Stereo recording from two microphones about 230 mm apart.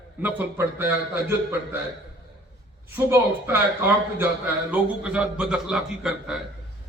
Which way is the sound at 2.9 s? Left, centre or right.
Centre.